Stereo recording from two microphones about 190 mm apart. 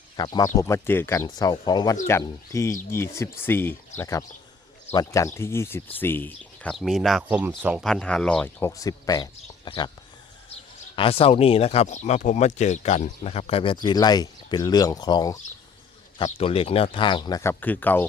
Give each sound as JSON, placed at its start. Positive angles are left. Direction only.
{"t": 0.2, "sound": "speech", "side_deg": 20}
{"t": 10.9, "sound": "speech", "side_deg": 30}